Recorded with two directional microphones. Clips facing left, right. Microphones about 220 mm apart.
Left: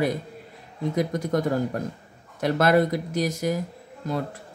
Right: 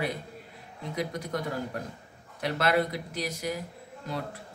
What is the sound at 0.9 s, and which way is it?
Speech, 45° left (ahead or behind).